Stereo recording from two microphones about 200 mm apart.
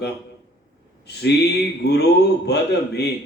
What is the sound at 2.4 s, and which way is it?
Speech, 55° left (ahead or behind).